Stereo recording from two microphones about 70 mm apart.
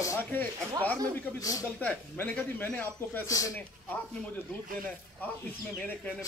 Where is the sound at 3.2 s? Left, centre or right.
Left.